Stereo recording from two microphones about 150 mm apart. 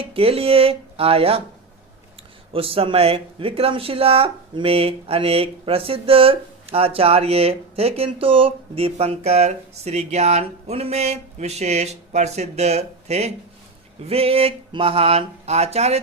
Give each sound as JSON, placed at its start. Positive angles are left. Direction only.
{"t": 0.0, "sound": "speech", "side_deg": -40}
{"t": 2.5, "sound": "speech", "side_deg": -40}